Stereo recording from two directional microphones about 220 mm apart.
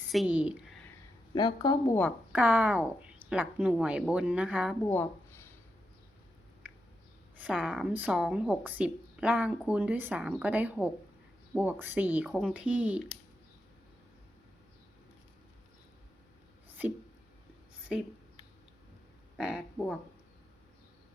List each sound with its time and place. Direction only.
0.1 s speech: 5° right (ahead or behind)
1.4 s speech: 20° left (ahead or behind)
2.3 s a woman's voice: 5° right (ahead or behind)
4.9 s a sound: 10° left (ahead or behind)
7.3 s a woman's voice: centre (ahead or behind)
19.4 s a woman's voice: 5° right (ahead or behind)